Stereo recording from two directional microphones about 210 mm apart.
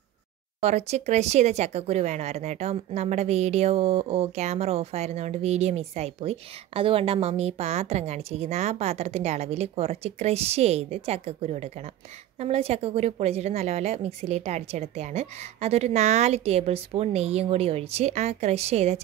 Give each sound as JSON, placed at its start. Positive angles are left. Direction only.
{"t": 0.6, "sound": "a woman's voice", "side_deg": -30}